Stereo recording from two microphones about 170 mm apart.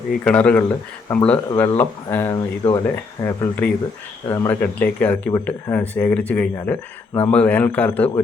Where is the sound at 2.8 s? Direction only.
15° left (ahead or behind).